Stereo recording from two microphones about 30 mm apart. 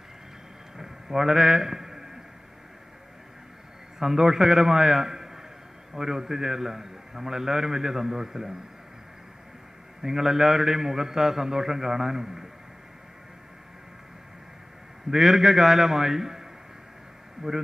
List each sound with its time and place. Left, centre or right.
0.7 s a sound: centre
4.0 s a man's voice: centre
10.0 s a man's voice: centre
15.0 s a man's voice: centre